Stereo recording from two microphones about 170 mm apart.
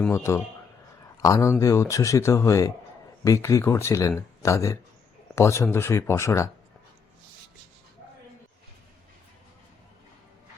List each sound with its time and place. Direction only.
0.0 s speech: 15° left (ahead or behind)